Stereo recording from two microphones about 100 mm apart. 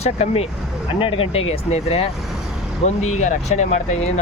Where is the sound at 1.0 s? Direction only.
70° left (ahead or behind); by 3.0 s 90° left.